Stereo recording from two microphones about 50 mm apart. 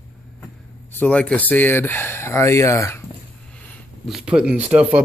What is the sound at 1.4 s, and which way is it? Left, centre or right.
Speech, left.